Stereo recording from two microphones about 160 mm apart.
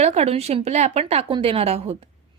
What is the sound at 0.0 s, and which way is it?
A woman's voice, 40° right (ahead or behind).